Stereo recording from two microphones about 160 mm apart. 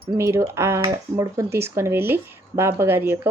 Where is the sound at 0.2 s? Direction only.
15° right (ahead or behind).